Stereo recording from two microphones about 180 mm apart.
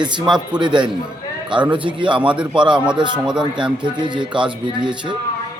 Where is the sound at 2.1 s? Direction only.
5° right (ahead or behind).